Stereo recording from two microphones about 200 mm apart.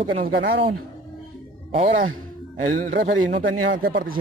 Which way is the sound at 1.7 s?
40° right (ahead or behind).